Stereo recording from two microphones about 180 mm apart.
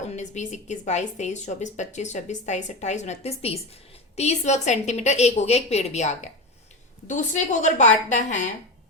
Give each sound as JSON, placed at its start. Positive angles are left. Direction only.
{"t": 0.0, "sound": "a woman's voice", "side_deg": 40}